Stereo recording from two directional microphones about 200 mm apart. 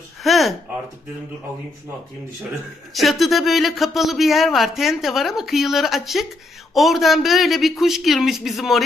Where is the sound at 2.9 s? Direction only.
Centre (ahead or behind).